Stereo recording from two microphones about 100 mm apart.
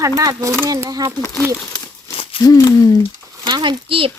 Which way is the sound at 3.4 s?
50° right (ahead or behind).